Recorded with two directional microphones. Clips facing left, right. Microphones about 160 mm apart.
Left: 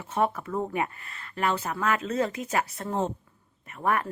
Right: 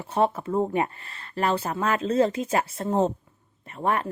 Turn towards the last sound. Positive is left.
turn(degrees=-25)  # may be behind; listen again after turning